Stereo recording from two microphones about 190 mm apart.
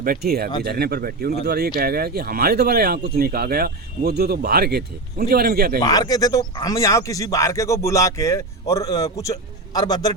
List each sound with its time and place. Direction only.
0.0 s speech: 50° right (ahead or behind)
5.8 s speech: 20° left (ahead or behind)